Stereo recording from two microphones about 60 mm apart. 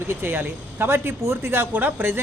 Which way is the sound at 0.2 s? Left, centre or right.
Right.